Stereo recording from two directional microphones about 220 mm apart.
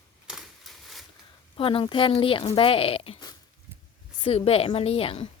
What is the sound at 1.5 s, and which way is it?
Speech, 25° left (ahead or behind).